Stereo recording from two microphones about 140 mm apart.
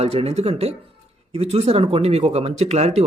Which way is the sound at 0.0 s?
45° right (ahead or behind).